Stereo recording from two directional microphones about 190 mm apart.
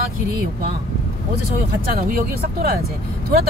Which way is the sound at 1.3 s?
50° right (ahead or behind).